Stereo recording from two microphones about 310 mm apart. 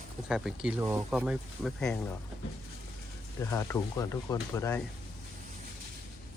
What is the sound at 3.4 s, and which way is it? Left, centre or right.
Speech, centre.